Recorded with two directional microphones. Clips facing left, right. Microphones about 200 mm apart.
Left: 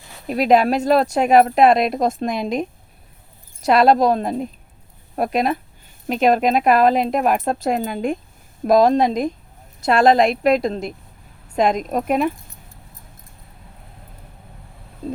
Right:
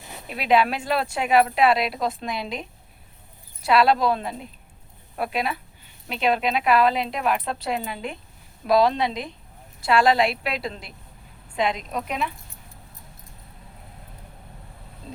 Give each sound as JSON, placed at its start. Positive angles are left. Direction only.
{"t": 0.3, "sound": "speech", "side_deg": 40}